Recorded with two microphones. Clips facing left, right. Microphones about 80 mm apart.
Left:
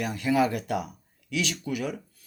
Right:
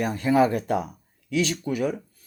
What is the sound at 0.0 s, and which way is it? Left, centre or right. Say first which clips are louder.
Speech: right 4 dB; right.